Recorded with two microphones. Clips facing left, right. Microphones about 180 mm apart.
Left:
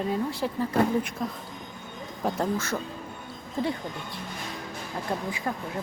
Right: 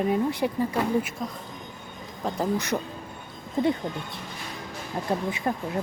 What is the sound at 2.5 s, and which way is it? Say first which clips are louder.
Speech: right 3 dB; 20° right (ahead or behind).